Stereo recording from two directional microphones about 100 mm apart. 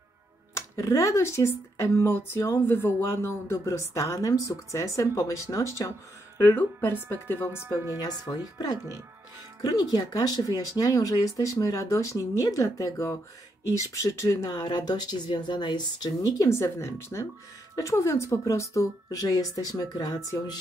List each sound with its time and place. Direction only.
0.6 s speech: 35° left (ahead or behind)
7.6 s speech: 25° right (ahead or behind)
8.0 s speech: 40° left (ahead or behind)